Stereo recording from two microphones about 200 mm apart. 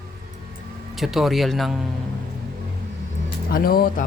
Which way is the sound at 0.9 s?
Centre (ahead or behind).